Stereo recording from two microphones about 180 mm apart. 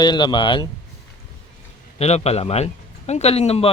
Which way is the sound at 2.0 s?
35° left (ahead or behind).